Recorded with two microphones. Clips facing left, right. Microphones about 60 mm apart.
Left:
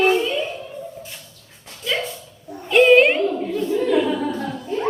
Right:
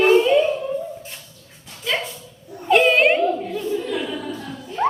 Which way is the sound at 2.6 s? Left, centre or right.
Centre.